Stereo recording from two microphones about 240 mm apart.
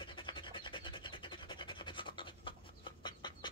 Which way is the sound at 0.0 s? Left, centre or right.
Left.